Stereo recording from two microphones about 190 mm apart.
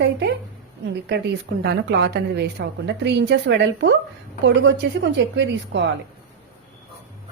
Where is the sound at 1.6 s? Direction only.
60° right (ahead or behind).